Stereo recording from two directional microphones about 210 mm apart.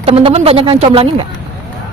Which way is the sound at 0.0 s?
25° right (ahead or behind).